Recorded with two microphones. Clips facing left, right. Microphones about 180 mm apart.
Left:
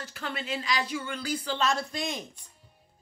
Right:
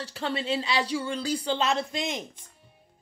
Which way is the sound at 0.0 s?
30° right (ahead or behind).